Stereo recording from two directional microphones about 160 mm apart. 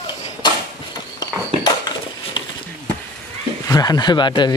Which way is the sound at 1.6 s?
30° left (ahead or behind).